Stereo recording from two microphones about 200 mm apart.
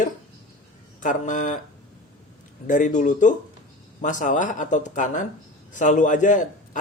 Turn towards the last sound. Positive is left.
turn(degrees=40)  # may be behind; listen again after turning